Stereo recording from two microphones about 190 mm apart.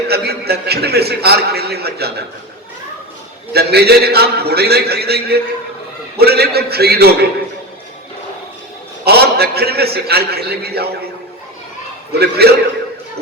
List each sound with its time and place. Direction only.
0.1 s a man's voice: 55° right (ahead or behind)
3.5 s a man's voice: 55° right (ahead or behind)
9.0 s a man's voice: 55° right (ahead or behind)
12.2 s a man's voice: 55° right (ahead or behind)